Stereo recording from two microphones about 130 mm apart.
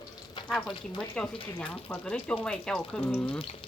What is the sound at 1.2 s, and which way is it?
Speech, 5° left (ahead or behind).